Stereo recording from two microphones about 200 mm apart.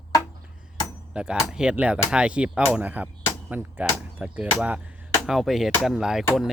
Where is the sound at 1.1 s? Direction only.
5° right (ahead or behind).